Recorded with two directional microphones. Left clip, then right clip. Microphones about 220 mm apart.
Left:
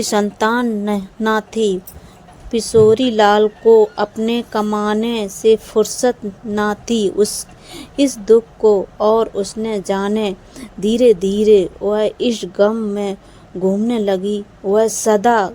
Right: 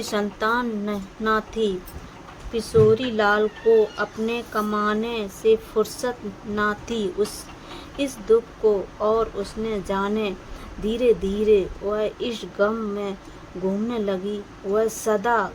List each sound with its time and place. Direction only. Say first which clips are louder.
0.0 s a woman's voice: left 8 dB; 30° left (ahead or behind)